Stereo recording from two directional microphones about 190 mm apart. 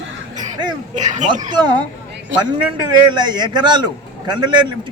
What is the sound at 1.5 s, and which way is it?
Speech, 25° right (ahead or behind).